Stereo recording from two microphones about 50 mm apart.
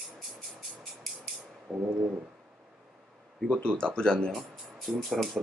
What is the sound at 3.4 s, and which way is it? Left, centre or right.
Speech, centre.